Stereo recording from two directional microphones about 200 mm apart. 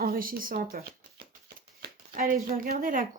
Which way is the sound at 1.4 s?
45° right (ahead or behind).